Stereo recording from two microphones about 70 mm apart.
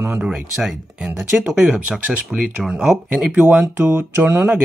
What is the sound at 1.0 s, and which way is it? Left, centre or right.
Speech, right.